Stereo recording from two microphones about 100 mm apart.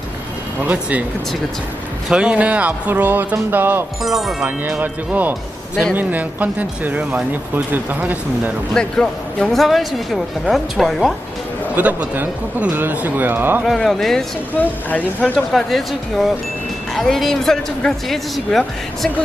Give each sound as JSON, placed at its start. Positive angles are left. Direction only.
{"t": 0.6, "sound": "speech", "side_deg": -15}
{"t": 2.0, "sound": "speech", "side_deg": -10}
{"t": 4.0, "sound": "speech", "side_deg": 0}
{"t": 4.6, "sound": "speech", "side_deg": -20}
{"t": 8.7, "sound": "speech", "side_deg": 5}
{"t": 11.7, "sound": "speech", "side_deg": -15}
{"t": 13.7, "sound": "speech", "side_deg": 0}
{"t": 14.6, "sound": "speech", "side_deg": 15}
{"t": 15.5, "sound": "speech", "side_deg": 0}